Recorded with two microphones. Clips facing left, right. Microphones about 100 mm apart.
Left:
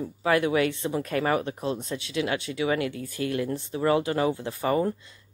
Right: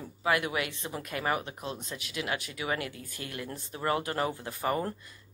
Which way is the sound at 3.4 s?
25° left (ahead or behind).